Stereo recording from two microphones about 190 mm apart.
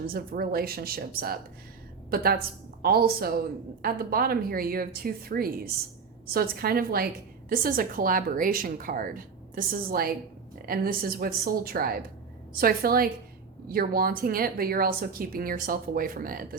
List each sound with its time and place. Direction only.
0.1 s a woman's voice: 50° right (ahead or behind)